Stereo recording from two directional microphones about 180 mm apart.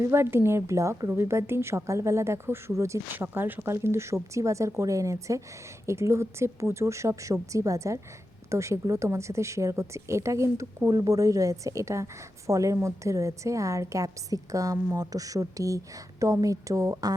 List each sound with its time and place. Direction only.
0.0 s a woman's voice: 15° right (ahead or behind)